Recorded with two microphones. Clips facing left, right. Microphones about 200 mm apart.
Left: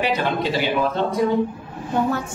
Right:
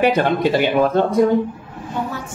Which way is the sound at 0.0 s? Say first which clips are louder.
Right 6 dB; 50° right (ahead or behind).